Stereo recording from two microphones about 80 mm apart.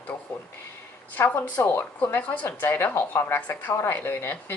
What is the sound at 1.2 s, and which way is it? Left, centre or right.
Speech, left.